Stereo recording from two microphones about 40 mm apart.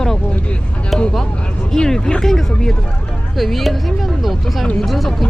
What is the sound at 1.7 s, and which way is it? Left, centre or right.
Speech, centre.